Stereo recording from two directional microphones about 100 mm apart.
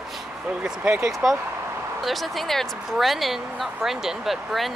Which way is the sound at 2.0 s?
Centre (ahead or behind).